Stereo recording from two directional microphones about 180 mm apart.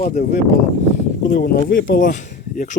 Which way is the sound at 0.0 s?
45° left (ahead or behind).